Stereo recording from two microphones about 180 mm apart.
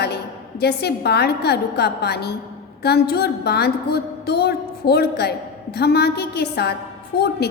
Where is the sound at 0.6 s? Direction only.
65° left (ahead or behind).